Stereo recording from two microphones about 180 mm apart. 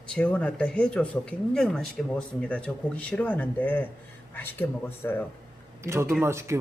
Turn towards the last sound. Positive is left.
turn(degrees=-15)  # may be behind; listen again after turning